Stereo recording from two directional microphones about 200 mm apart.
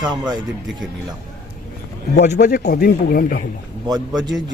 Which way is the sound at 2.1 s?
55° left (ahead or behind).